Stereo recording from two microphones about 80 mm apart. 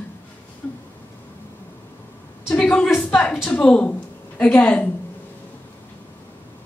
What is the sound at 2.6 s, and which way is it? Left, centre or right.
A woman's voice, centre.